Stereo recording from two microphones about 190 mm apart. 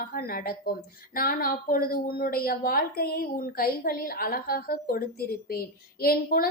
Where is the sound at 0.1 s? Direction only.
50° left (ahead or behind).